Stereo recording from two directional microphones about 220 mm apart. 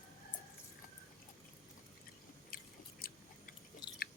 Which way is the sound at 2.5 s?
40° left (ahead or behind).